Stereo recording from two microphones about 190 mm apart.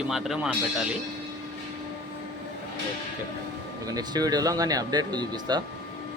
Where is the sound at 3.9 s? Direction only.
20° right (ahead or behind).